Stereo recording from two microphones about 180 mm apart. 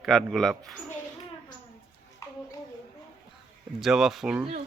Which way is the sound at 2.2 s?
15° left (ahead or behind).